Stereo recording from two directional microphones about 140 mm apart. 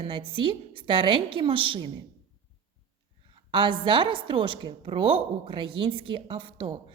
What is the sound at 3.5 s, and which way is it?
A woman's voice, 35° right (ahead or behind).